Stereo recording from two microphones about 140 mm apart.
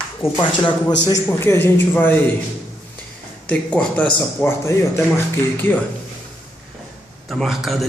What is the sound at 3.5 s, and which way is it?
A man's voice, 10° left (ahead or behind).